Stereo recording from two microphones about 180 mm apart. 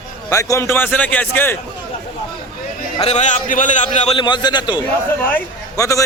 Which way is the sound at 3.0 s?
40° left (ahead or behind).